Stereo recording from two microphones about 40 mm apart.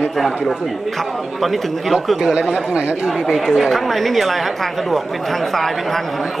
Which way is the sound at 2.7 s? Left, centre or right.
Right.